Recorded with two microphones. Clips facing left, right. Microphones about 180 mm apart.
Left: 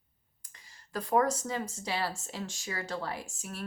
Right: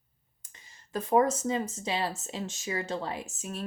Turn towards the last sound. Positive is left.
turn(degrees=-20)  # may be behind; listen again after turning